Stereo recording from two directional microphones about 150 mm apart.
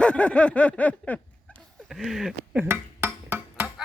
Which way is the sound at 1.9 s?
Centre (ahead or behind).